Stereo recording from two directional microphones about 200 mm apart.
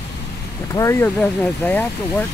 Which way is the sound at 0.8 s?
15° left (ahead or behind).